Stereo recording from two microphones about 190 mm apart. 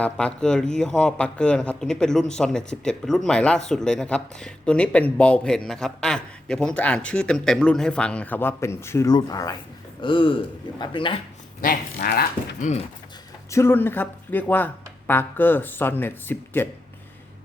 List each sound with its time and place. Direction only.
0.0 s speech: 5° left (ahead or behind); by 11.2 s 25° left (ahead or behind)
11.6 s speech: 50° left (ahead or behind)
13.5 s speech: 15° left (ahead or behind)